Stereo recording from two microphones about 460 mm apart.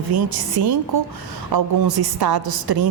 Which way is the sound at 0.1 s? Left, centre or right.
Right.